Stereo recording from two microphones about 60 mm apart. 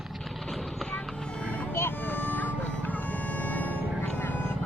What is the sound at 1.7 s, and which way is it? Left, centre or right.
Music, left.